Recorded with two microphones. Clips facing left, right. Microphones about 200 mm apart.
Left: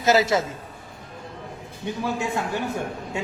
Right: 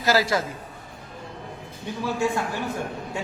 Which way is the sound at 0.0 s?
20° left (ahead or behind).